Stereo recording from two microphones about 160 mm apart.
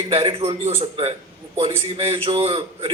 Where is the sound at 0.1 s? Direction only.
35° right (ahead or behind).